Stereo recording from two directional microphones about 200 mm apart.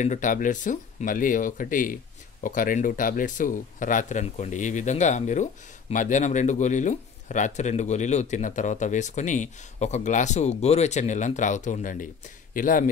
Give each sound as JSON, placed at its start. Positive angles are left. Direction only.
{"t": 0.0, "sound": "speech", "side_deg": 40}